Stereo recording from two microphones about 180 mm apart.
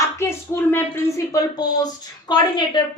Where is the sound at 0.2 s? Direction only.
15° left (ahead or behind).